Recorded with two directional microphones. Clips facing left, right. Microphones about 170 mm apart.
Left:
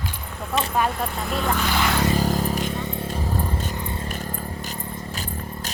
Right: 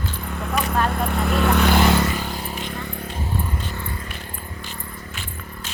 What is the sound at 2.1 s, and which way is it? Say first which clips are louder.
Vehicle: left 6 dB; 40° left (ahead or behind).